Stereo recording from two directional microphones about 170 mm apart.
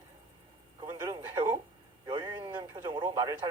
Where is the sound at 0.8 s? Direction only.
25° right (ahead or behind).